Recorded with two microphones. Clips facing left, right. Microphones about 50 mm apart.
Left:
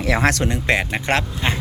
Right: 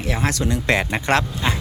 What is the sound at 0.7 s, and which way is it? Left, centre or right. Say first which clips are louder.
Speech: even; centre.